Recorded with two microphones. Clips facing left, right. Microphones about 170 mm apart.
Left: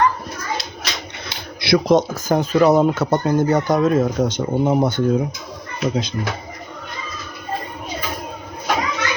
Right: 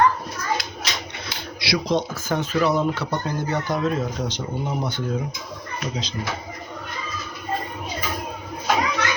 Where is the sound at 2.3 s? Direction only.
40° left (ahead or behind).